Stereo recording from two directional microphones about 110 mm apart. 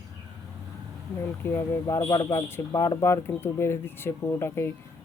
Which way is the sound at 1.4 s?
20° left (ahead or behind).